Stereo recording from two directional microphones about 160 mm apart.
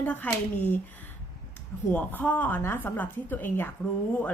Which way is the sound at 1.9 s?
10° left (ahead or behind).